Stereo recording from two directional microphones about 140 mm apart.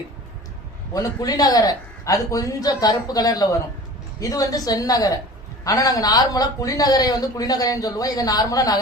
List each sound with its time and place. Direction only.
0.9 s speech: 25° left (ahead or behind)